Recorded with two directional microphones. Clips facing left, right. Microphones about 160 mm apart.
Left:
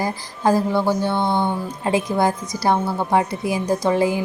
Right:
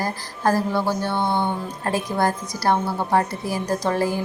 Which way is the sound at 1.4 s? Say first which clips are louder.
Left 2 dB; 15° left (ahead or behind).